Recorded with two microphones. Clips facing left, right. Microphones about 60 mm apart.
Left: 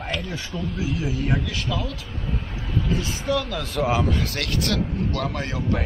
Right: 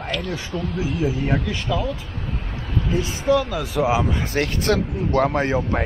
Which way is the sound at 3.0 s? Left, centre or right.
Centre.